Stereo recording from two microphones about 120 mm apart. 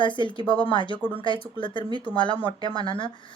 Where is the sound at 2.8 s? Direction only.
45° left (ahead or behind).